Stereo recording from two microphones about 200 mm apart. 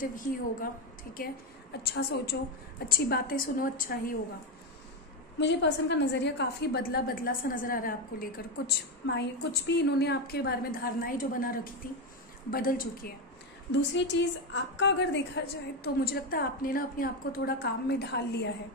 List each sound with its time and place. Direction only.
0.0 s a woman's voice: 45° left (ahead or behind)
5.4 s a woman's voice: 60° left (ahead or behind); by 8.7 s 45° left (ahead or behind)
9.0 s a woman's voice: 65° left (ahead or behind); by 13.1 s 45° left (ahead or behind)
13.7 s a woman's voice: 60° left (ahead or behind)